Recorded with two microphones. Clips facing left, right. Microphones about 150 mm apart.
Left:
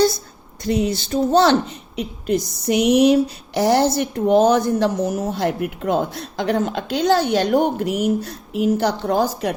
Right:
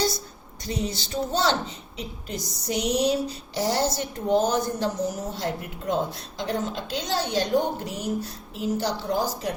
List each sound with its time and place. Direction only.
0.9 s a woman's voice: 55° left (ahead or behind)